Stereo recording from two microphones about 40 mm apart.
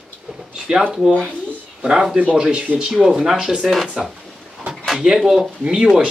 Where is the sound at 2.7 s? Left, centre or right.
Right.